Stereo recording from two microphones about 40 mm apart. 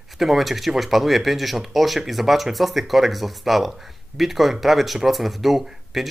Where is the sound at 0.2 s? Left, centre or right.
Centre.